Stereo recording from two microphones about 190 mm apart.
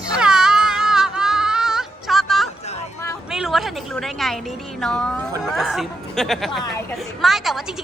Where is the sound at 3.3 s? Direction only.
Centre (ahead or behind).